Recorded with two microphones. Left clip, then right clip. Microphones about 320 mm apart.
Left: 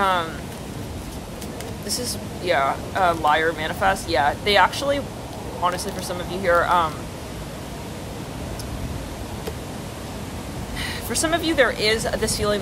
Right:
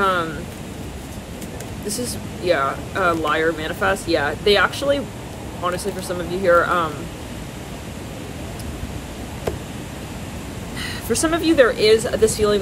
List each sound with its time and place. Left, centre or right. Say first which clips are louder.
0.0 s a sound: right 1 dB; centre
1.9 s speech: right 1 dB; centre
10.8 s speech: right 3 dB; centre